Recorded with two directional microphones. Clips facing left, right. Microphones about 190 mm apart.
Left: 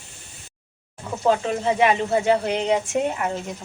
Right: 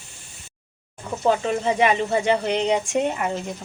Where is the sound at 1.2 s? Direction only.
Centre (ahead or behind).